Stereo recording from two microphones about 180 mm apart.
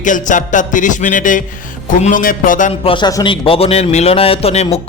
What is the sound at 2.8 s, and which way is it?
A man's voice, 25° left (ahead or behind).